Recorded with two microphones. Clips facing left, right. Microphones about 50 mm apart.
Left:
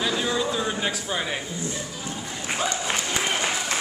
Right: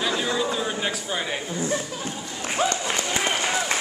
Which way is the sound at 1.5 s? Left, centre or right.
Right.